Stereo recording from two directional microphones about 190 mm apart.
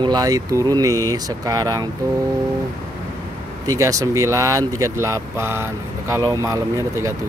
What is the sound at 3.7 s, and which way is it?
Speech, 15° right (ahead or behind).